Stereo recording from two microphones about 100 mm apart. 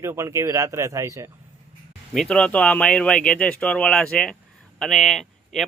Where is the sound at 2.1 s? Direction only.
5° left (ahead or behind).